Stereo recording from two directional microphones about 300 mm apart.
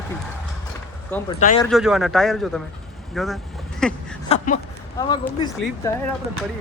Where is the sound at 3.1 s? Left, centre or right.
Centre.